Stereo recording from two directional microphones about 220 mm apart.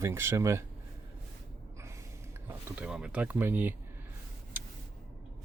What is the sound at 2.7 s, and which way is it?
Speech, 5° right (ahead or behind).